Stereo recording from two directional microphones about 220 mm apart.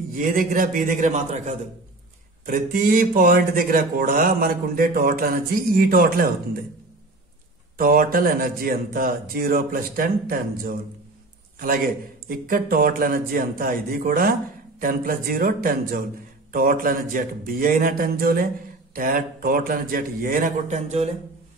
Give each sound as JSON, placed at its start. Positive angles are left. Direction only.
{"t": 0.2, "sound": "speech", "side_deg": -35}
{"t": 7.7, "sound": "speech", "side_deg": -40}
{"t": 12.3, "sound": "speech", "side_deg": -40}